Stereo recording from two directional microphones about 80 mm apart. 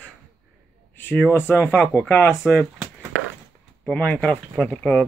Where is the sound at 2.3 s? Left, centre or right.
Centre.